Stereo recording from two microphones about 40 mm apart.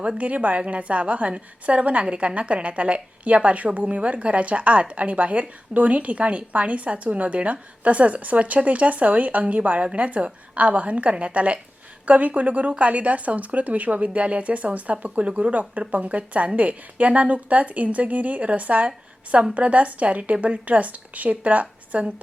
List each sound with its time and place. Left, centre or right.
0.2 s speech: right